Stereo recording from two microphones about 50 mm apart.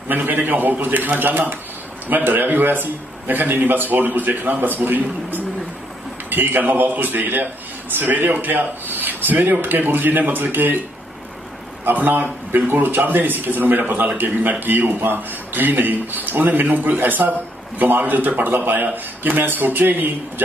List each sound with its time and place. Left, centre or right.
0.1 s a man's voice: right
11.8 s a man's voice: right